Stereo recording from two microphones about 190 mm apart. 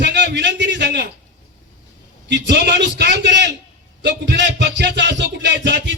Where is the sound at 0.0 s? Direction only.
65° right (ahead or behind).